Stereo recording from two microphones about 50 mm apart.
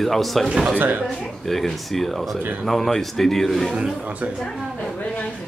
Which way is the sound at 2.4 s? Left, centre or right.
Right.